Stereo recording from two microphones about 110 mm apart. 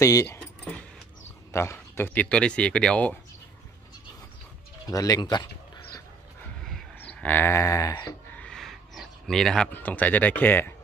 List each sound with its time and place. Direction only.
0.0 s speech: 30° left (ahead or behind)
1.5 s speech: 25° left (ahead or behind)
4.8 s speech: 35° left (ahead or behind)
6.4 s a sound: 5° left (ahead or behind); by 8.2 s 30° left (ahead or behind)
8.3 s a sound: 10° left (ahead or behind)
9.7 s speech: 15° left (ahead or behind)